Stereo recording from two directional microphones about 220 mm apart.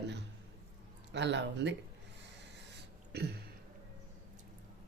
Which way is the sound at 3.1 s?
50° right (ahead or behind).